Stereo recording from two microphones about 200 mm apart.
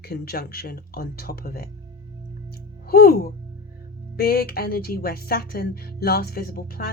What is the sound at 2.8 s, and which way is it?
Speech, 50° left (ahead or behind).